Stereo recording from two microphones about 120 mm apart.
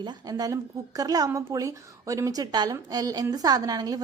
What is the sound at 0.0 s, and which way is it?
A woman's voice, 30° right (ahead or behind).